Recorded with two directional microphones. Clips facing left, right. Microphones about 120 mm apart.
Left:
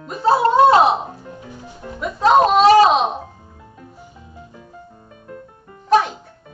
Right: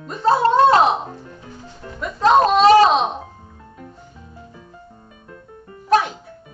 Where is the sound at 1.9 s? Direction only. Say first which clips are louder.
Left 1 dB; 5° left (ahead or behind).